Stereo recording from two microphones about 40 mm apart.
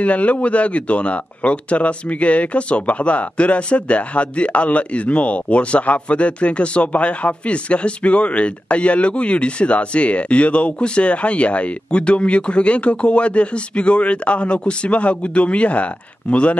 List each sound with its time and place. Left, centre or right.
0.0 s speech: left